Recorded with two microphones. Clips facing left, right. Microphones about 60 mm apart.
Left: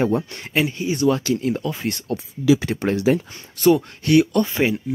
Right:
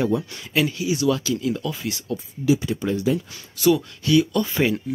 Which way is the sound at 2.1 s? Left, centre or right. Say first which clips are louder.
Left 3 dB; left.